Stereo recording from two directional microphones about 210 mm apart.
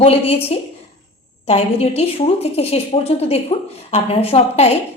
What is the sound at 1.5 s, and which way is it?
A woman's voice, 30° left (ahead or behind).